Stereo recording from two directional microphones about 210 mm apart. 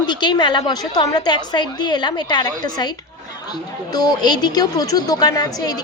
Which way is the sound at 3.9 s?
20° left (ahead or behind).